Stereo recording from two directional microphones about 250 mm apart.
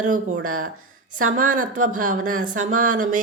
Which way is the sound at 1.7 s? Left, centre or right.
Right.